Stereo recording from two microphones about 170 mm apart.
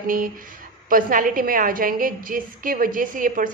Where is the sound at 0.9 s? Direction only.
55° right (ahead or behind).